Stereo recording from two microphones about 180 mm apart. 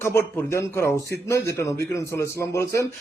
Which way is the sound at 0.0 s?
10° left (ahead or behind).